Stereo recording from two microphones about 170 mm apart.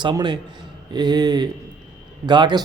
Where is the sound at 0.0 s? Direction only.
25° right (ahead or behind).